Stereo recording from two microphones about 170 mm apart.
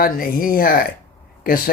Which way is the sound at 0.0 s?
55° left (ahead or behind).